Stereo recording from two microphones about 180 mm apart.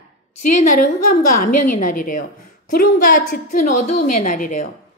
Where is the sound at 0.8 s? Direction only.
55° left (ahead or behind).